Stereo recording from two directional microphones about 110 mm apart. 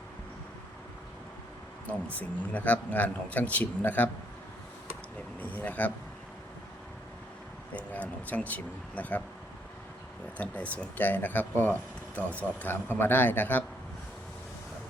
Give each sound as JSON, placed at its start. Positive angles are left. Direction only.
{"t": 2.0, "sound": "speech", "side_deg": 15}
{"t": 5.4, "sound": "speech", "side_deg": 15}
{"t": 7.8, "sound": "speech", "side_deg": 15}
{"t": 10.3, "sound": "speech", "side_deg": 15}